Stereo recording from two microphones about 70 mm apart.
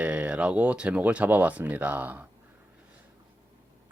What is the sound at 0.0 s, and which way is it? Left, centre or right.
Speech, right.